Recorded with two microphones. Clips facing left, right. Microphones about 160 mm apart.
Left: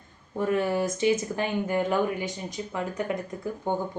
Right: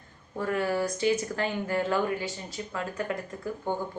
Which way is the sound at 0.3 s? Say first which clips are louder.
Left 3 dB; 20° left (ahead or behind).